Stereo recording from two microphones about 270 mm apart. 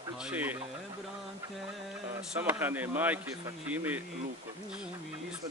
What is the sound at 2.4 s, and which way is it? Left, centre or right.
Speech, centre.